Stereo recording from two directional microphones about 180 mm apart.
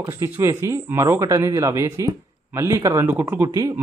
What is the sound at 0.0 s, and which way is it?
Speech, 15° right (ahead or behind).